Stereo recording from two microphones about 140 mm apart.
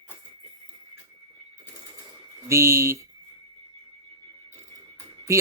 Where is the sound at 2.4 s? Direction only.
20° right (ahead or behind).